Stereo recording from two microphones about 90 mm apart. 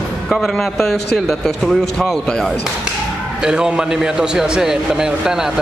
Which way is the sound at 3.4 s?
10° right (ahead or behind).